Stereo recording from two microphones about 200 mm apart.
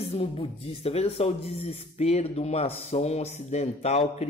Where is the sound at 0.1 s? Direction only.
30° left (ahead or behind).